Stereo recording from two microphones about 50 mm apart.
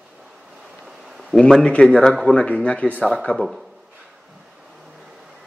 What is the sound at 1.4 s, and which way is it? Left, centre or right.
Speech, centre.